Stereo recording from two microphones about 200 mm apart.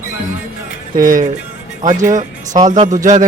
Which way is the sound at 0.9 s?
45° right (ahead or behind).